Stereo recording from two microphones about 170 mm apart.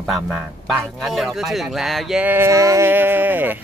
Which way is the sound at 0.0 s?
Centre (ahead or behind).